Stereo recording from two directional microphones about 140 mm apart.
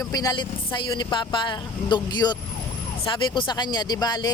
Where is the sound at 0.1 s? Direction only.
25° left (ahead or behind).